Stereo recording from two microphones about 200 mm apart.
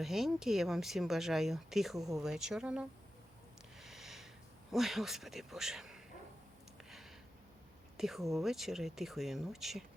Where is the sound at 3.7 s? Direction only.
Centre (ahead or behind).